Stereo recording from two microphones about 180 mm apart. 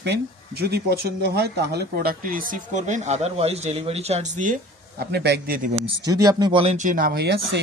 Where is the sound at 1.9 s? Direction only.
55° right (ahead or behind).